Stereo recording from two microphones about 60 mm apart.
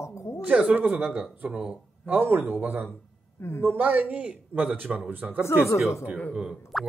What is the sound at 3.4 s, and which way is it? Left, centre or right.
Speech, left.